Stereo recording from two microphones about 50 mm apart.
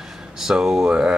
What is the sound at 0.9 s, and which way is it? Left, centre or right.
Speech, right.